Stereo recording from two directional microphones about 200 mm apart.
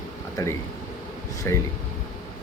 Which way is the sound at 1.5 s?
15° left (ahead or behind).